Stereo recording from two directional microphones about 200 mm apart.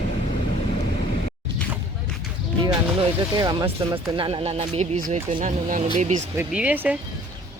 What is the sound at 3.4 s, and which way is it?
Speech, 20° right (ahead or behind).